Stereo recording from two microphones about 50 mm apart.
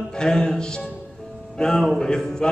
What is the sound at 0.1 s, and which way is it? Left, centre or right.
Music, centre.